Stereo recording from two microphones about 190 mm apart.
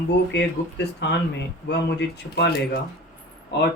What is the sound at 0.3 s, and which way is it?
Speech, 65° left (ahead or behind).